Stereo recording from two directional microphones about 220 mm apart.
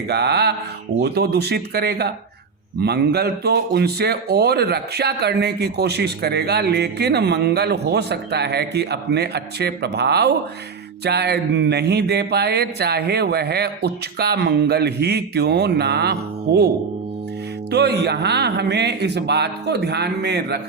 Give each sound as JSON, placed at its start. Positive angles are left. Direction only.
{"t": 0.1, "sound": "speech", "side_deg": -50}
{"t": 17.7, "sound": "speech", "side_deg": -50}